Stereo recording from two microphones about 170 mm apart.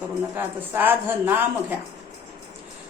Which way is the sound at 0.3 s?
10° right (ahead or behind).